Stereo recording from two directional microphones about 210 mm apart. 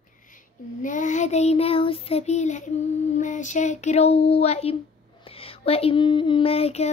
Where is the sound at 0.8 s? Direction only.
35° left (ahead or behind).